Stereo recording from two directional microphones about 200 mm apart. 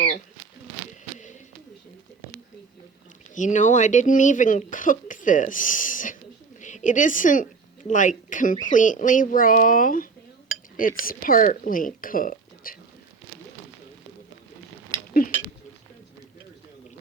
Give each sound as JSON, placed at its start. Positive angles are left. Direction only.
{"t": 3.3, "sound": "a woman's voice", "side_deg": 40}
{"t": 15.2, "sound": "speech", "side_deg": 45}